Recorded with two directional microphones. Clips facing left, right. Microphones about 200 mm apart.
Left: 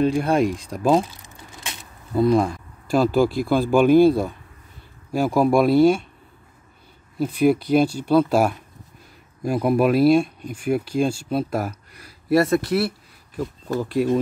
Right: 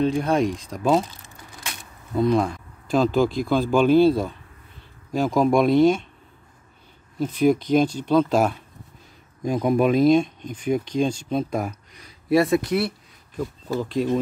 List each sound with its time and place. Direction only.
0.0 s speech: 10° left (ahead or behind)
1.2 s crumpling: 25° left (ahead or behind)
2.1 s speech: 5° left (ahead or behind)
7.2 s speech: 10° left (ahead or behind)